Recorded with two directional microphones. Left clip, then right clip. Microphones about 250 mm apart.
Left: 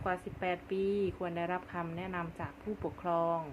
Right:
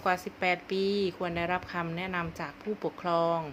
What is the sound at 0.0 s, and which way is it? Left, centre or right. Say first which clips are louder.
Speech: right 7 dB; right.